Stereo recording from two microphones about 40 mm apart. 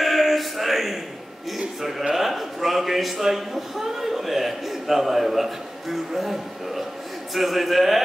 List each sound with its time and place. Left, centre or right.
0.0 s music: centre
1.8 s a man's voice: centre